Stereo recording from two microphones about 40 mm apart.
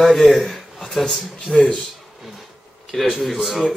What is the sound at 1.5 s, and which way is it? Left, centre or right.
Speech, left.